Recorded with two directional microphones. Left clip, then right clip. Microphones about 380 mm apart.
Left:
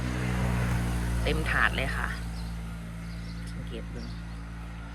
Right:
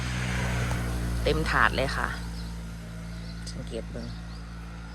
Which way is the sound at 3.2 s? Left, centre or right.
Right.